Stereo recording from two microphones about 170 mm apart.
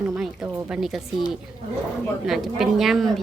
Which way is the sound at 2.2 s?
Centre (ahead or behind).